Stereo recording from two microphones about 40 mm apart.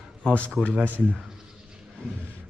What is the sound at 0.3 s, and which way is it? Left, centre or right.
Speech, left.